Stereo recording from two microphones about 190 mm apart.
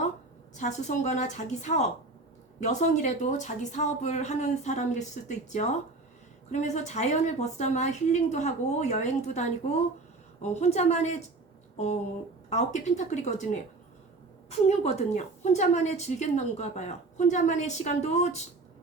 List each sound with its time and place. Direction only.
0.5 s a woman's voice: 40° left (ahead or behind)
12.5 s a woman's voice: 40° left (ahead or behind)
14.5 s a woman's voice: 35° left (ahead or behind)